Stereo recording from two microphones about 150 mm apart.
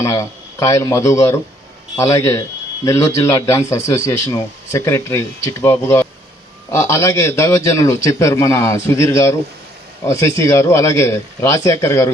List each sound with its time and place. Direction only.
0.0 s a man's voice: 20° left (ahead or behind)